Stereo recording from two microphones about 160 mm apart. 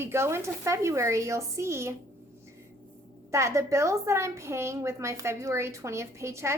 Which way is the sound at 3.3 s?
15° right (ahead or behind).